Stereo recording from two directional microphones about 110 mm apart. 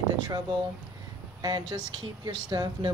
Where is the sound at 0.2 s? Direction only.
40° right (ahead or behind).